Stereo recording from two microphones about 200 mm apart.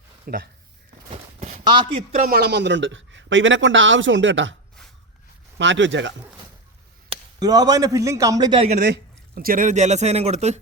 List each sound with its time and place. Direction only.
0.3 s speech: 50° right (ahead or behind)
1.1 s a sound: 35° right (ahead or behind)
1.6 s a man's voice: 25° right (ahead or behind)
2.2 s a man's voice: 50° right (ahead or behind); by 4.5 s 65° right (ahead or behind)
5.5 s a man's voice: 65° right (ahead or behind)
7.3 s a man's voice: 20° right (ahead or behind)
8.8 s speech: 50° right (ahead or behind); by 10.6 s 35° right (ahead or behind)